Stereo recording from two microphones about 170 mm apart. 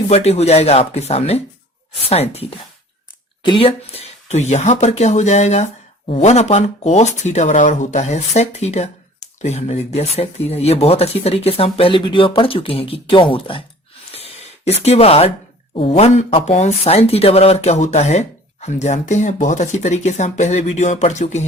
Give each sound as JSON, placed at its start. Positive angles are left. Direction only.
{"t": 0.1, "sound": "speech", "side_deg": 40}
{"t": 14.1, "sound": "a sound", "side_deg": 35}
{"t": 15.7, "sound": "speech", "side_deg": 35}